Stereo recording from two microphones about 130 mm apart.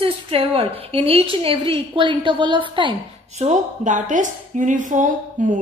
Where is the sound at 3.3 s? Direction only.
65° right (ahead or behind); by 5.5 s 80° right.